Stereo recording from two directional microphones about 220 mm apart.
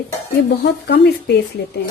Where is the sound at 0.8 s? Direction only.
50° left (ahead or behind).